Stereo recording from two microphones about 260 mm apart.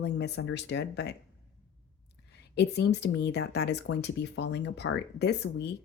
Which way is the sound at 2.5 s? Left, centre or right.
Left.